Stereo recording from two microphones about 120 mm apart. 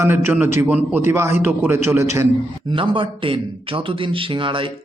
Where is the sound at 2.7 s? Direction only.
45° right (ahead or behind).